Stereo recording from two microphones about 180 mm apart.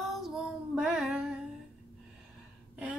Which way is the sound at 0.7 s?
5° right (ahead or behind).